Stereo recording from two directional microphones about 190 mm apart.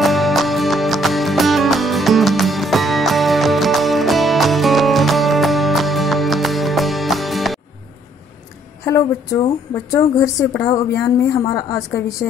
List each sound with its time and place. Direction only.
0.0 s music: centre (ahead or behind)
8.8 s a woman's voice: 15° left (ahead or behind)